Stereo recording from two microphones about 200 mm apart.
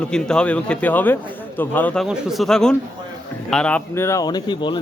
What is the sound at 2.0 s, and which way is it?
A man's voice, centre (ahead or behind).